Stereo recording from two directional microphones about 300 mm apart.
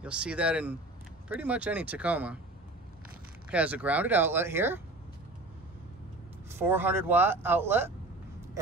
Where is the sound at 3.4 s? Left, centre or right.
Centre.